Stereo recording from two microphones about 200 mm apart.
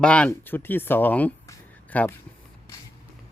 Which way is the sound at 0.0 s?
5° left (ahead or behind).